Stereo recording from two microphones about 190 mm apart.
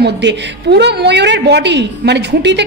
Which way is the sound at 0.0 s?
65° right (ahead or behind).